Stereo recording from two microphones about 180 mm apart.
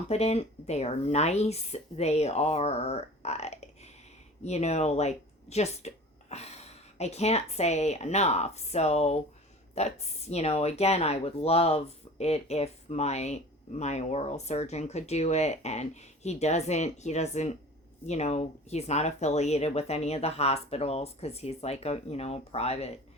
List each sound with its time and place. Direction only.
0.1 s speech: 35° left (ahead or behind)